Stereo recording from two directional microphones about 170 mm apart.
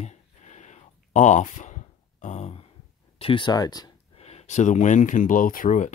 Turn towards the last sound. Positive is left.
turn(degrees=50)  # may be behind; listen again after turning